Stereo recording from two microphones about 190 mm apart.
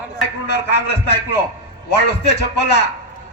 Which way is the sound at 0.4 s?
65° left (ahead or behind).